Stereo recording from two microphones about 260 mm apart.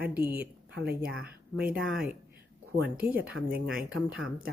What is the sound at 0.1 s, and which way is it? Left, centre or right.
Speech, centre.